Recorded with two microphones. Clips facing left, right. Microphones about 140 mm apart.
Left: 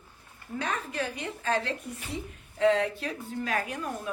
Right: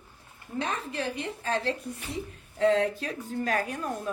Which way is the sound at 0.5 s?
30° right (ahead or behind).